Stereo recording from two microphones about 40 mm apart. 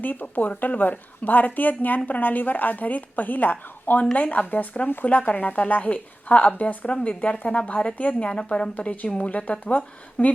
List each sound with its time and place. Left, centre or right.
0.0 s a woman's voice: left
6.8 s speech: left
8.3 s speech: left
8.7 s speech: left